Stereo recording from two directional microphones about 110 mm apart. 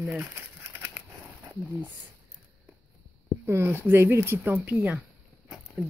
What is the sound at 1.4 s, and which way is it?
Speech, 25° right (ahead or behind).